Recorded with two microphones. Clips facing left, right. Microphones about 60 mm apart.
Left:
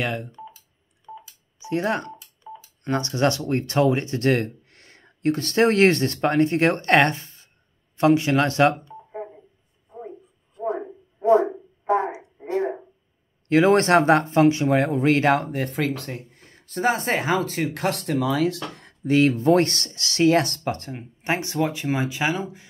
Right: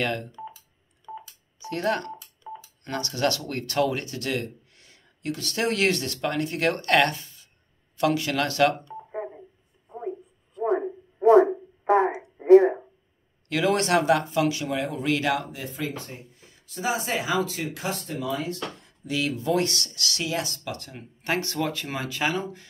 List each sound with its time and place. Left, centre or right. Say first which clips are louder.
0.0 s speech: left 1 dB; centre
1.1 s telephone dialing: right 1 dB; right
1.6 s speech: left 2 dB; left
2.4 s telephone dialing: right 1 dB; centre
2.8 s speech: left 5 dB; left
10.6 s a sound: right 3 dB; right
12.4 s a sound: right 16 dB; right
13.5 s speech: left 6 dB; left
15.6 s speech: left 7 dB; left
19.0 s speech: left 9 dB; left
20.2 s speech: left 13 dB; left
20.7 s speech: left 5 dB; left
21.0 s speech: even; left